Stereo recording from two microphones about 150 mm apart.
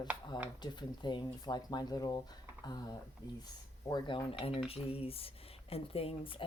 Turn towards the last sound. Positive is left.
turn(degrees=35)  # may be behind; listen again after turning